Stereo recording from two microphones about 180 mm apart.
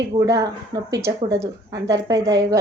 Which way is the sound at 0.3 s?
20° right (ahead or behind).